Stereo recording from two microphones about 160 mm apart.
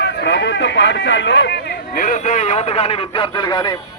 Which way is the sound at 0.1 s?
90° left.